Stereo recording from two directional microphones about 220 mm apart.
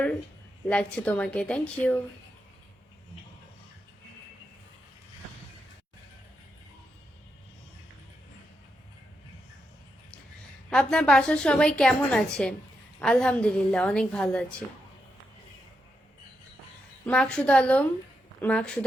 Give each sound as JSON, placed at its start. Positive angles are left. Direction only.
{"t": 0.7, "sound": "a woman's voice", "side_deg": 5}
{"t": 10.7, "sound": "a woman's voice", "side_deg": 5}
{"t": 17.1, "sound": "a woman's voice", "side_deg": 5}